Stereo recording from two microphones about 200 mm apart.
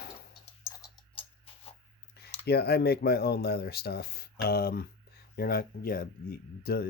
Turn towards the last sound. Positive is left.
turn(degrees=50)  # may be behind; listen again after turning